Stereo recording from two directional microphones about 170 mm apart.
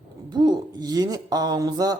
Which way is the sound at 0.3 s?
25° right (ahead or behind).